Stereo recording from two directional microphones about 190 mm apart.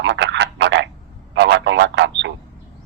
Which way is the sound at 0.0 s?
70° right (ahead or behind).